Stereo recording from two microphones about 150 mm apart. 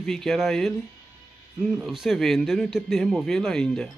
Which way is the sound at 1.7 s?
5° right (ahead or behind).